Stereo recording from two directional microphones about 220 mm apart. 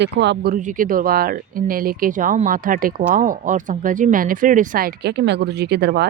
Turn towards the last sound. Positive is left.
turn(degrees=-50)  # may be behind; listen again after turning